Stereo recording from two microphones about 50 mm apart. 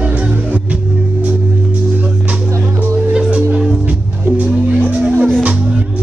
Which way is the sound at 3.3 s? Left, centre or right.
Right.